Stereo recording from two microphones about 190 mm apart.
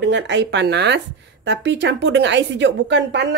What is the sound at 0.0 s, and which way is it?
Speech, 70° right (ahead or behind).